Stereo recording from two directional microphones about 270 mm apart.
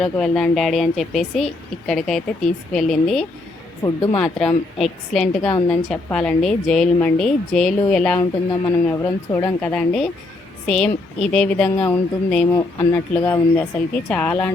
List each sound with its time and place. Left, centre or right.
0.0 s a woman's voice: centre
3.8 s speech: centre
4.2 s a woman's voice: centre